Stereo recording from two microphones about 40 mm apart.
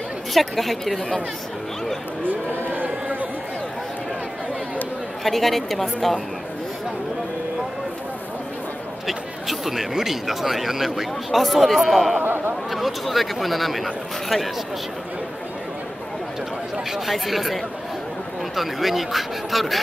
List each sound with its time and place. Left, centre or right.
0.3 s speech: centre
2.2 s a sound: right
5.2 s speech: centre
9.0 s speech: centre
12.2 s a sound: right
12.7 s speech: centre
17.0 s speech: centre
18.6 s speech: centre